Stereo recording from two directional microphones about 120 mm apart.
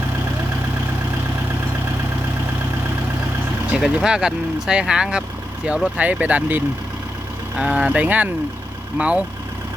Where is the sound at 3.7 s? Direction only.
5° right (ahead or behind).